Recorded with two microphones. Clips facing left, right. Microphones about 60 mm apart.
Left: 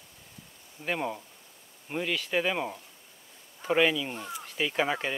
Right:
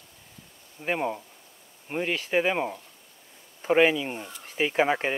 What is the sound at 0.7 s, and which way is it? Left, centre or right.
Speech, right.